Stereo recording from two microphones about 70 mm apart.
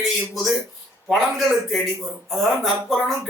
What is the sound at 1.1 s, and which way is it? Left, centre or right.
A man's voice, centre.